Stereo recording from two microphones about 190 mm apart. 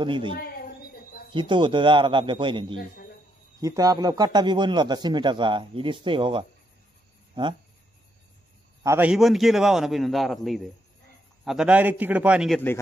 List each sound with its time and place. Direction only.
0.0 s a man's voice: 25° right (ahead or behind)
8.8 s a man's voice: 10° right (ahead or behind)
12.5 s a man's voice: 10° left (ahead or behind)